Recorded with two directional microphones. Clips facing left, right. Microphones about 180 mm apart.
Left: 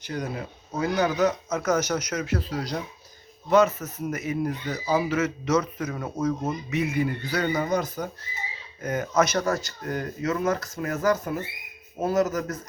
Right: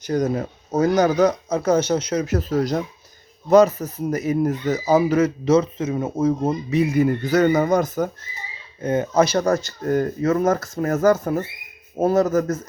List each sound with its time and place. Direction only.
0.0 s speech: 40° right (ahead or behind)
2.2 s speech: 45° right (ahead or behind)
8.8 s speech: 30° right (ahead or behind)